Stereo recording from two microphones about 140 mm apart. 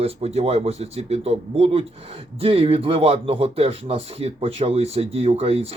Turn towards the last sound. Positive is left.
turn(degrees=-45)  # may be behind; listen again after turning